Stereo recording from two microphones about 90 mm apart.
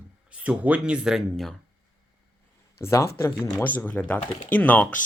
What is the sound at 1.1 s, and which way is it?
Speech, centre (ahead or behind).